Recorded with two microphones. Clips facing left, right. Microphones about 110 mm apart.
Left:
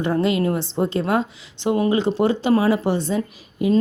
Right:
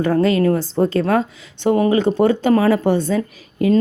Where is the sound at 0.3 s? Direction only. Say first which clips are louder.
Right 4 dB; 15° left (ahead or behind).